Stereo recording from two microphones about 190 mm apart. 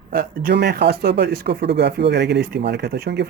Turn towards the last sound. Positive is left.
turn(degrees=-60)  # may be behind; listen again after turning